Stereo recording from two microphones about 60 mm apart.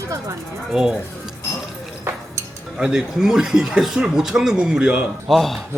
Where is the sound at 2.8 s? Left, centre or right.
Centre.